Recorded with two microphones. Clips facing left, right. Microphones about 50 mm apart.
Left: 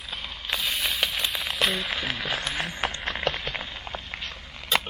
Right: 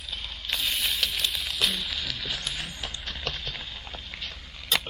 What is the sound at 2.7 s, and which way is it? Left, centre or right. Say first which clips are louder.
Run: left 7 dB; left.